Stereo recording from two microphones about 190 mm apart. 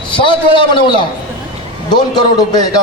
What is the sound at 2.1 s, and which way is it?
Speech, 20° left (ahead or behind).